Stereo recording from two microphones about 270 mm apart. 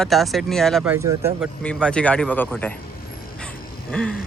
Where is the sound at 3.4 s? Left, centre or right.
Centre.